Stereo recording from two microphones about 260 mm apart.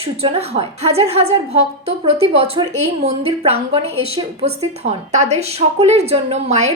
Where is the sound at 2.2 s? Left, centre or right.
Right.